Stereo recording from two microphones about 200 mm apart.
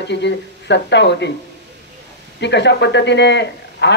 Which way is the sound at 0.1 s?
60° left (ahead or behind).